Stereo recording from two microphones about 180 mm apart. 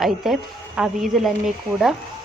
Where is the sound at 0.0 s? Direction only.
Centre (ahead or behind).